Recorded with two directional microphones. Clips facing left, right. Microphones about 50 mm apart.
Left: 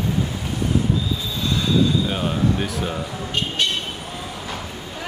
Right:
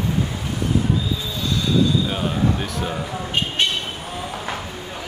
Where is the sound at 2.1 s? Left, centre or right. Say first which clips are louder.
Even; centre.